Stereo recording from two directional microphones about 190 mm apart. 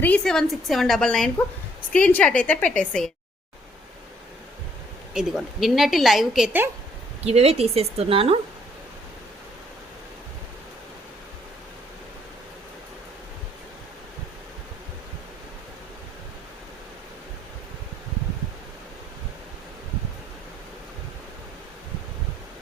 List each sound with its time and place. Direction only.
0.0 s a woman's voice: 5° left (ahead or behind)
5.1 s a woman's voice: centre (ahead or behind)
7.3 s a woman's voice: 35° right (ahead or behind)